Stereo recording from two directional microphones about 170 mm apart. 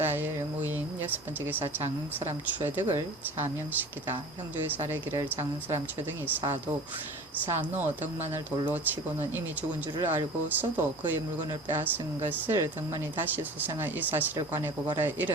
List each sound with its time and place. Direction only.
0.0 s a sound: 10° right (ahead or behind)
2.1 s speech: 40° right (ahead or behind)
2.6 s speech: 10° right (ahead or behind)
7.4 s speech: 10° right (ahead or behind)
9.3 s speech: 10° right (ahead or behind)